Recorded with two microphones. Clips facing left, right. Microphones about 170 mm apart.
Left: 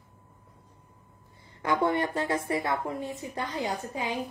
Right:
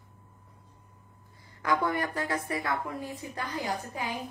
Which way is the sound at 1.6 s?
25° left (ahead or behind).